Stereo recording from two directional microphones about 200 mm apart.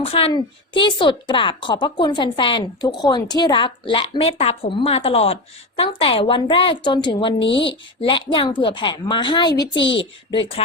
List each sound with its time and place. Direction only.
0.0 s a woman's voice: 30° left (ahead or behind)